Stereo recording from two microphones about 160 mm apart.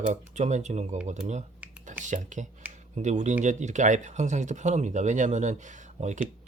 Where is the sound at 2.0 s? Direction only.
50° right (ahead or behind).